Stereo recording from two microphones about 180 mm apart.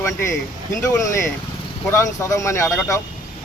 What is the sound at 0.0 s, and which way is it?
Speech, 15° left (ahead or behind).